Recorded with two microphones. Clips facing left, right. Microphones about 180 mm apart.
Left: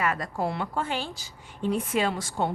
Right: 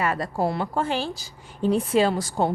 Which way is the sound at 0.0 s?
30° right (ahead or behind).